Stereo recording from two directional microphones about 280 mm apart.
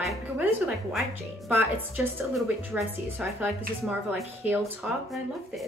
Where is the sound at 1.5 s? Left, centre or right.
Centre.